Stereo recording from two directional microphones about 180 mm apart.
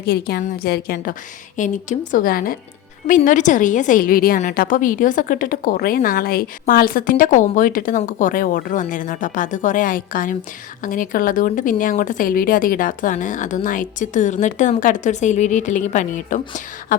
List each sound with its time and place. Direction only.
0.0 s a woman's voice: 60° left (ahead or behind)
1.5 s a woman's voice: 45° left (ahead or behind)